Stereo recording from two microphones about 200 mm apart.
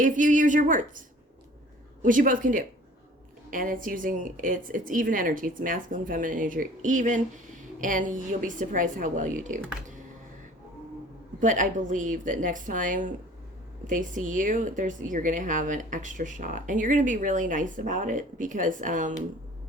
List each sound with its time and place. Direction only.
0.0 s speech: 40° right (ahead or behind)
2.0 s a woman's voice: 40° right (ahead or behind)
11.3 s speech: 40° right (ahead or behind)